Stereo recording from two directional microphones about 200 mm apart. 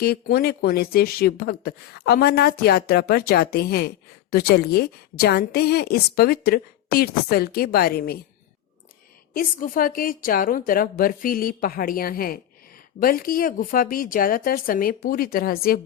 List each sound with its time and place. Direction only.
0.0 s a woman's voice: 50° left (ahead or behind)
9.3 s a woman's voice: 45° left (ahead or behind)